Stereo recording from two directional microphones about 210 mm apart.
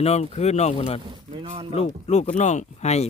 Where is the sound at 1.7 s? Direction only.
35° left (ahead or behind).